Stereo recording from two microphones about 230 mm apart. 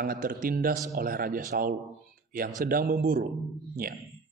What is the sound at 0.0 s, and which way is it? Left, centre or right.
Speech, right.